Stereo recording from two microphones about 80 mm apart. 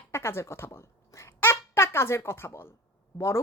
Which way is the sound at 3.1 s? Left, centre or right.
Left.